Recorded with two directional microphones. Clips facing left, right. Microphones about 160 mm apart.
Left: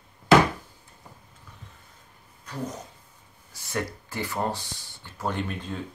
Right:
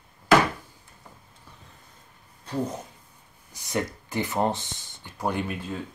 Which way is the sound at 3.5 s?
20° right (ahead or behind).